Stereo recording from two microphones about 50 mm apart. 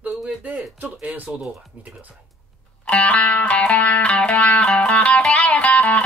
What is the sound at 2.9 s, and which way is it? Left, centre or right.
Music, left.